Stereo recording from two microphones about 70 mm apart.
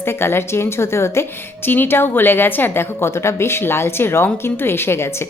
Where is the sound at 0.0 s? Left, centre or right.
Left.